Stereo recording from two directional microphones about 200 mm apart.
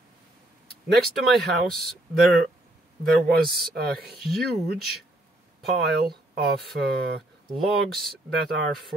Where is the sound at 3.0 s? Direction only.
50° right (ahead or behind).